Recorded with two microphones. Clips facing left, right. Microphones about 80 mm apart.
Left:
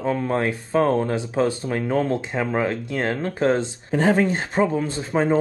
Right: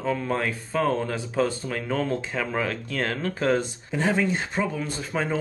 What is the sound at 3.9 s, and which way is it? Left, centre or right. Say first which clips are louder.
Speech: left 5 dB; left.